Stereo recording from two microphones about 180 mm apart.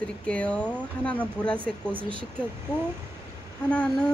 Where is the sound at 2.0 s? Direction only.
30° right (ahead or behind).